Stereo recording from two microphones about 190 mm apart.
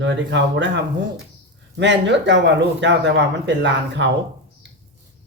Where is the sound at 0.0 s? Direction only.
70° right (ahead or behind).